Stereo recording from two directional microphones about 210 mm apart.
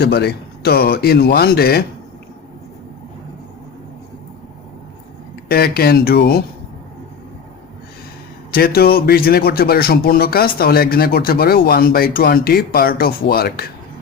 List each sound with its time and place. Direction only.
0.0 s speech: 50° left (ahead or behind)
5.5 s speech: 45° left (ahead or behind)
8.5 s speech: 45° left (ahead or behind)